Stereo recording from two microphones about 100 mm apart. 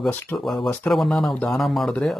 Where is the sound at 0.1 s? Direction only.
20° left (ahead or behind).